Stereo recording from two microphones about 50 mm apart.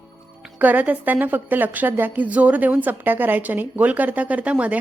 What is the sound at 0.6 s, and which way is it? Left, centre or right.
A woman's voice, right.